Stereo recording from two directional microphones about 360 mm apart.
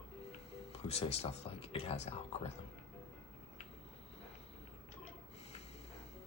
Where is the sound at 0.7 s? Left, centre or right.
Centre.